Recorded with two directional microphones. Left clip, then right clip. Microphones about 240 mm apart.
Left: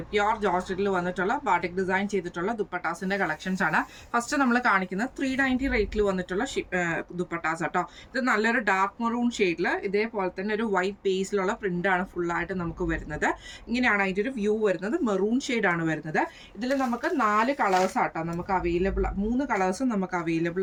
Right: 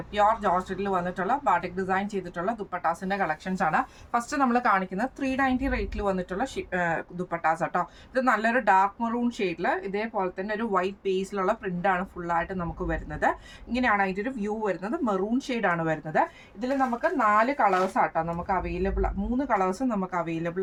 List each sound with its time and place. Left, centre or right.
0.1 s speech: centre